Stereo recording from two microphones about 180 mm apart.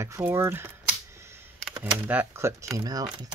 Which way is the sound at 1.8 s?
10° right (ahead or behind).